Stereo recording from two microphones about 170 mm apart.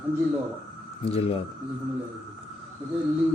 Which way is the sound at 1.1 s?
35° left (ahead or behind).